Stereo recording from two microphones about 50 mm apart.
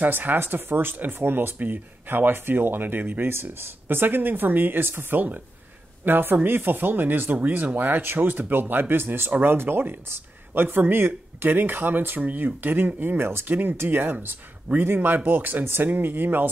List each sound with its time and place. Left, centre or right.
0.0 s speech: right